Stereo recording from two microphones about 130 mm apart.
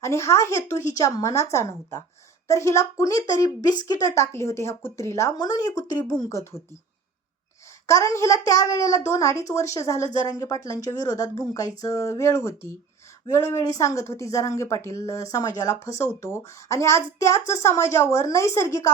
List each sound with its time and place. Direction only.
0.0 s speech: 20° left (ahead or behind)
7.9 s speech: 25° left (ahead or behind)